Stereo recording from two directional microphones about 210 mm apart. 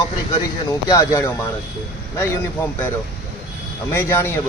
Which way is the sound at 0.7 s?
15° left (ahead or behind).